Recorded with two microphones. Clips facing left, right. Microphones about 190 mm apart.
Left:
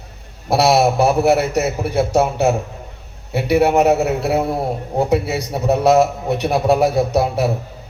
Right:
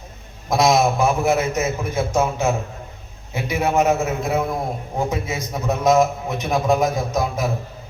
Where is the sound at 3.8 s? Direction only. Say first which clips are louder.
Left 4 dB; 35° left (ahead or behind).